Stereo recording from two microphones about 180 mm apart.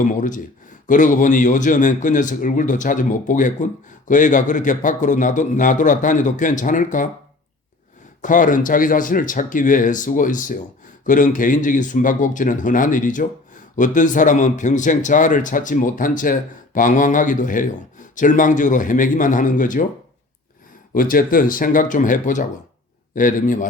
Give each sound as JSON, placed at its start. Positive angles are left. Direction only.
{"t": 0.0, "sound": "speech", "side_deg": 45}
{"t": 8.2, "sound": "speech", "side_deg": 45}
{"t": 20.9, "sound": "speech", "side_deg": 50}